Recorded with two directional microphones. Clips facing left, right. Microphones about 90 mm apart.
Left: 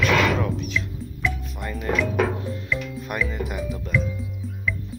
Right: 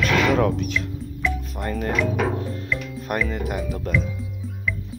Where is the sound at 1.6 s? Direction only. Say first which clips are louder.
Right 1 dB; 45° right (ahead or behind).